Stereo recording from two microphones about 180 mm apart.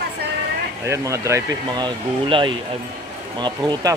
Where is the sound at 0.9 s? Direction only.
15° right (ahead or behind).